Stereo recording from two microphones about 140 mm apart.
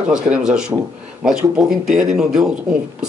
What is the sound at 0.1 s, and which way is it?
Speech, 5° right (ahead or behind).